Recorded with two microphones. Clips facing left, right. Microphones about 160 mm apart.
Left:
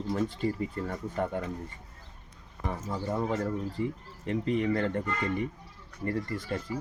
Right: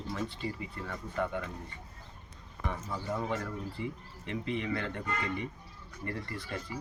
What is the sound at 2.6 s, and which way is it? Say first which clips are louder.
Speech: left 4 dB; 35° left (ahead or behind).